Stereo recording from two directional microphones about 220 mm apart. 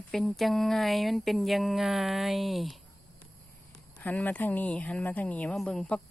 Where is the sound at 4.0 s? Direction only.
5° left (ahead or behind).